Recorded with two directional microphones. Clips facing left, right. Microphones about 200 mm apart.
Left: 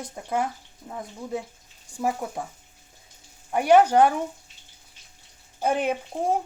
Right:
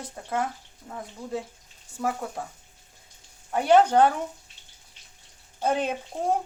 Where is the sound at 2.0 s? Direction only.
15° left (ahead or behind).